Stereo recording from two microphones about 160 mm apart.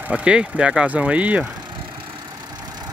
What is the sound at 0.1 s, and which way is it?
Speech, 5° right (ahead or behind).